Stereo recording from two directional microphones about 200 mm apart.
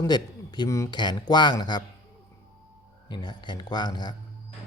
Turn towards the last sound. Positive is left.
turn(degrees=20)  # may be behind; listen again after turning